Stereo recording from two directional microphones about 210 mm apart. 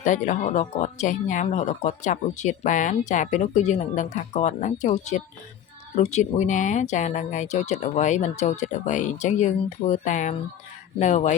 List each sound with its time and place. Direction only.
0.0 s speech: 35° left (ahead or behind)